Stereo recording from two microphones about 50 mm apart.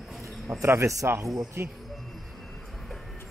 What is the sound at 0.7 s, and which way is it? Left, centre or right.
Speech, right.